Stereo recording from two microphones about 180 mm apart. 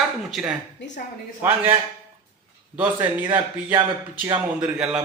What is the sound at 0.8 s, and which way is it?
Speech, 80° left.